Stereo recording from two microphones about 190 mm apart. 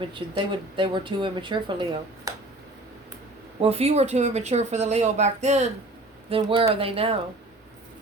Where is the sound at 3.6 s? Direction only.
30° right (ahead or behind).